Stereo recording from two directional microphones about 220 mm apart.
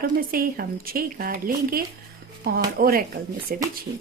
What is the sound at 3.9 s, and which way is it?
Speech, 25° right (ahead or behind).